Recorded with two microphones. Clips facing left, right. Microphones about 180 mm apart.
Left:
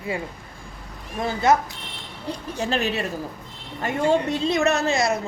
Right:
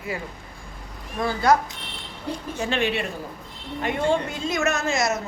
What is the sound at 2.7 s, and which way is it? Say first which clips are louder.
A woman's voice: even; 40° left (ahead or behind).